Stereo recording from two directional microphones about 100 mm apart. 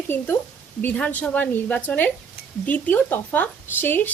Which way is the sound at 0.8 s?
15° left (ahead or behind).